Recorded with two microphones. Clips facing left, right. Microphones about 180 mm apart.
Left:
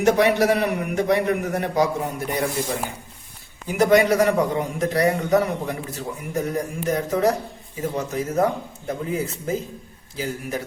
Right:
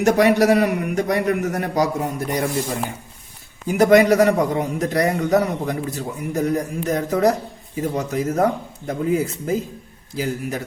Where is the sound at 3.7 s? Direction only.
40° right (ahead or behind).